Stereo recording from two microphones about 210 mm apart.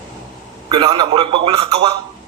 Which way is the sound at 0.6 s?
25° right (ahead or behind).